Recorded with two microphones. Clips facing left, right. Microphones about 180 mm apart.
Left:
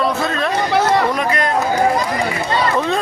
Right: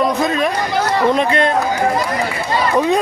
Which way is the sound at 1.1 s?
25° right (ahead or behind).